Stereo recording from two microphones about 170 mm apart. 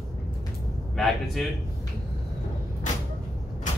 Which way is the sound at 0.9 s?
Centre (ahead or behind).